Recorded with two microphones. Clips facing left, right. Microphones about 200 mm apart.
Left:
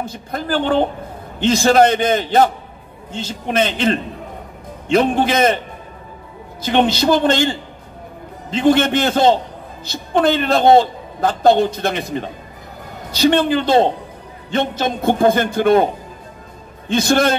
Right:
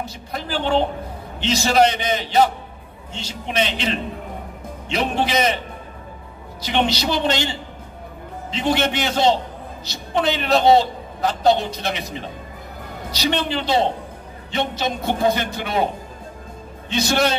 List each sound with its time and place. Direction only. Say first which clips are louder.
0.0 s a man's voice: left 4 dB; 50° left (ahead or behind)
6.6 s a man's voice: left 5 dB; 50° left (ahead or behind)
16.9 s a man's voice: left 5 dB; 50° left (ahead or behind)